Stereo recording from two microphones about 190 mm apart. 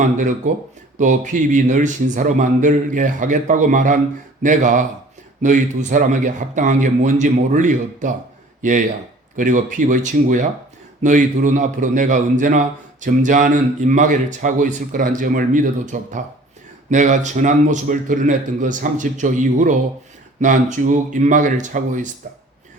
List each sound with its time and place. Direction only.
0.0 s a man's voice: 40° right (ahead or behind)